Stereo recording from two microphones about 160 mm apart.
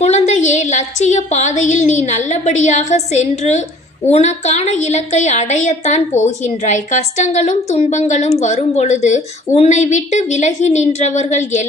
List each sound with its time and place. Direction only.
0.0 s a woman's voice: 45° left (ahead or behind)